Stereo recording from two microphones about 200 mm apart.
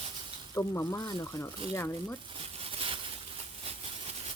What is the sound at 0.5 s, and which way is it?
Speech, 15° left (ahead or behind).